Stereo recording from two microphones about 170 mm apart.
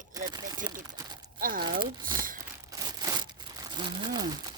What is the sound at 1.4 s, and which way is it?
Speech, 55° right (ahead or behind).